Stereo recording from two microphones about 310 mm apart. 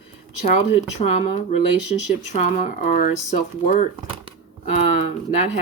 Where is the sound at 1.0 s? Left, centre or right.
Left.